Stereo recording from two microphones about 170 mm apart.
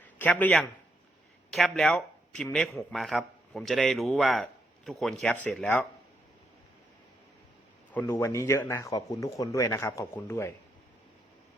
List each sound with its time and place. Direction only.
0.2 s a man's voice: 10° left (ahead or behind)
7.9 s speech: 15° left (ahead or behind)